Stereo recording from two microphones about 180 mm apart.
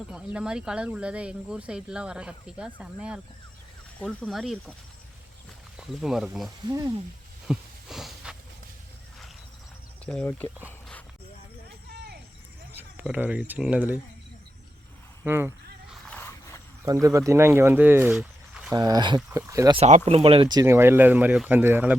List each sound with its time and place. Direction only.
0.3 s speech: 5° right (ahead or behind)
5.7 s speech: centre (ahead or behind)
6.7 s speech: 20° right (ahead or behind)
7.4 s a sound: centre (ahead or behind)
10.1 s speech: 5° left (ahead or behind)
10.7 s a sound: 10° left (ahead or behind)
12.7 s speech: 10° right (ahead or behind)
15.2 s speech: 15° right (ahead or behind)
15.9 s a sound: 10° left (ahead or behind)
16.8 s speech: 20° right (ahead or behind)
18.7 s speech: 20° right (ahead or behind)
19.7 s speech: 35° right (ahead or behind); by 21.9 s 10° right (ahead or behind)